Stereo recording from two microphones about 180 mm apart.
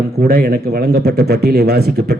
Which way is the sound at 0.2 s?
60° right (ahead or behind).